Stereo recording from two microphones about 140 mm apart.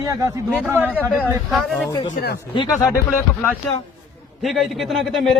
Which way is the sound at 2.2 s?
90° left.